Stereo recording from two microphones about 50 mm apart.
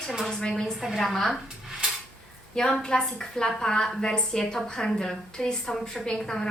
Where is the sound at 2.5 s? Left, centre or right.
Centre.